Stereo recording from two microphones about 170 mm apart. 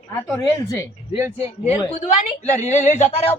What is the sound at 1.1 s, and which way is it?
A man's voice, 35° left (ahead or behind).